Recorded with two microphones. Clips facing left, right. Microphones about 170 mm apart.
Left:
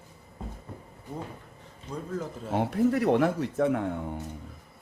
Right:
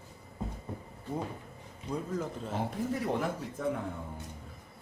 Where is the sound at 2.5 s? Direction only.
70° left (ahead or behind).